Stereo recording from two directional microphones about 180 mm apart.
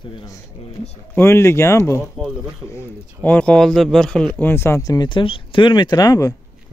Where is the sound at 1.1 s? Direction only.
15° left (ahead or behind).